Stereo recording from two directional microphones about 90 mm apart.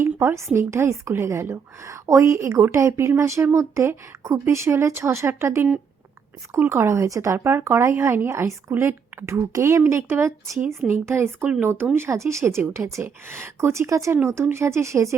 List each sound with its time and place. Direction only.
0.0 s speech: 30° right (ahead or behind)
7.3 s a woman's voice: 25° right (ahead or behind)